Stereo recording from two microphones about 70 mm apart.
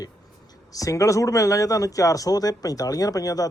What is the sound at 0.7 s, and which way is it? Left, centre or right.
Speech, left.